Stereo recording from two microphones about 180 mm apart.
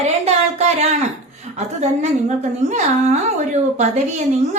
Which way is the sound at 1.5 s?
40° right (ahead or behind).